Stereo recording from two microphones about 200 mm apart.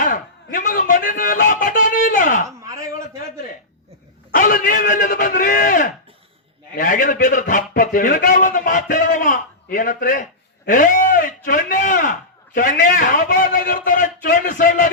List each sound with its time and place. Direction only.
0.0 s a man's voice: 40° left (ahead or behind)
2.6 s a sound: 15° right (ahead or behind)
4.4 s a man's voice: 45° left (ahead or behind)